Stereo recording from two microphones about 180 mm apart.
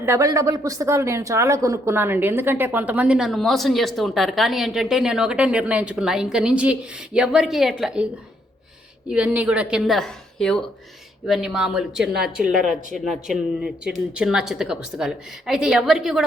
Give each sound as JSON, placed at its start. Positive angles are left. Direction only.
{"t": 0.0, "sound": "speech", "side_deg": -15}
{"t": 9.0, "sound": "speech", "side_deg": -5}